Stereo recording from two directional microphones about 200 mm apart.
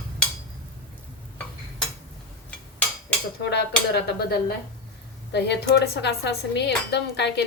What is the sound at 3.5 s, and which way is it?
Speech, 55° left (ahead or behind).